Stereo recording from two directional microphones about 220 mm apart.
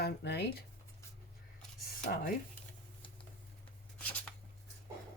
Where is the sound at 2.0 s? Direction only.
40° left (ahead or behind).